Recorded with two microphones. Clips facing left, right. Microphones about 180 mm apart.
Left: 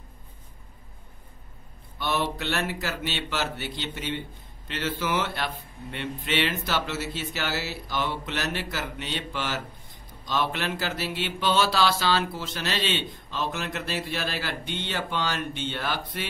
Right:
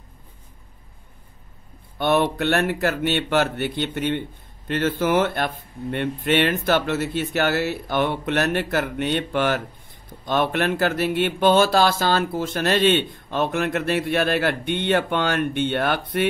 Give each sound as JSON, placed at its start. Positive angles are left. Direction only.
{"t": 2.0, "sound": "speech", "side_deg": -55}